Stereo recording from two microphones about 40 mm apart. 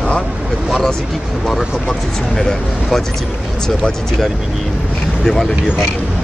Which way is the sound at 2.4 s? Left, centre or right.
Centre.